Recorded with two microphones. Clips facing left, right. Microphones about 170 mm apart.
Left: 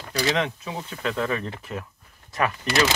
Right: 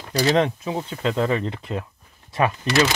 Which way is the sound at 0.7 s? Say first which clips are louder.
Right 5 dB; 25° right (ahead or behind).